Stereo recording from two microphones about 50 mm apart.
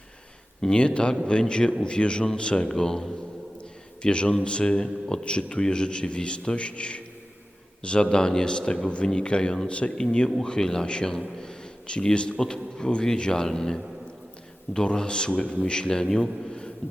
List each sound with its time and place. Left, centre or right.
0.6 s a man's voice: centre